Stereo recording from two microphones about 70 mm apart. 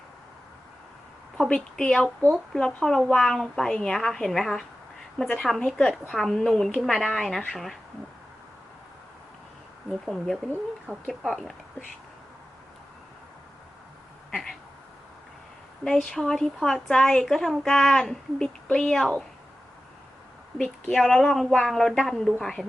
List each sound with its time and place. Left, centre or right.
1.5 s a woman's voice: centre
9.9 s speech: centre
14.3 s a sound: centre
15.8 s a woman's voice: centre
20.9 s speech: centre